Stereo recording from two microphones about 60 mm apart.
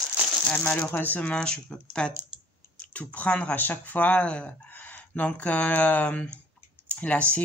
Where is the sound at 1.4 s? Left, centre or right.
Centre.